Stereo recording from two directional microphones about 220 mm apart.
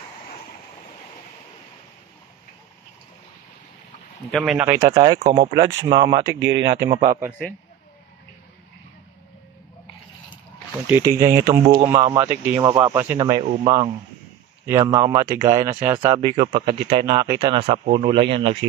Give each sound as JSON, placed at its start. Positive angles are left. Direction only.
{"t": 4.3, "sound": "speech", "side_deg": 0}
{"t": 5.2, "sound": "speech", "side_deg": -25}
{"t": 5.5, "sound": "speech", "side_deg": -15}
{"t": 7.2, "sound": "a man's voice", "side_deg": -5}
{"t": 10.9, "sound": "speech", "side_deg": -15}
{"t": 14.7, "sound": "speech", "side_deg": -15}